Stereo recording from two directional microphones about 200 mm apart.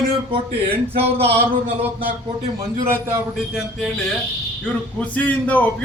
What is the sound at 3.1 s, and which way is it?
Speech, 5° right (ahead or behind).